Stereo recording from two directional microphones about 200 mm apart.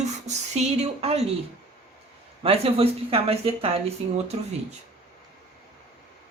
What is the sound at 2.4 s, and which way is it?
Speech, 30° right (ahead or behind).